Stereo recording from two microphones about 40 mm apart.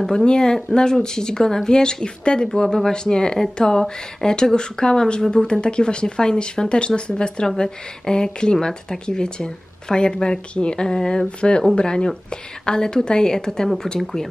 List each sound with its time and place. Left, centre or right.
0.0 s a woman's voice: centre
11.2 s a woman's voice: left; by 14.2 s centre